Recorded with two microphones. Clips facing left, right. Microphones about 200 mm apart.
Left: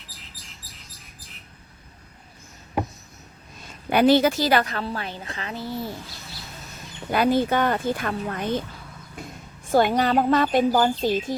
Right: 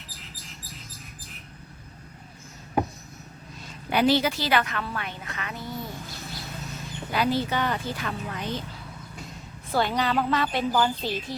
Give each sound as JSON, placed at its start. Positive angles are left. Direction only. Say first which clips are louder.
{"t": 3.8, "sound": "a woman's voice", "louder": "left 5 dB", "side_deg": 50}
{"t": 7.1, "sound": "speech", "louder": "left 5 dB", "side_deg": 50}
{"t": 9.6, "sound": "speech", "louder": "left 6 dB", "side_deg": 50}